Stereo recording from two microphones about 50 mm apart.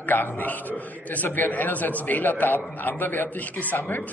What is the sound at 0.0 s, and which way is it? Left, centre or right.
A man's voice, left.